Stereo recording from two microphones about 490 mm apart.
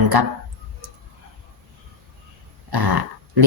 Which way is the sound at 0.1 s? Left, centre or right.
Right.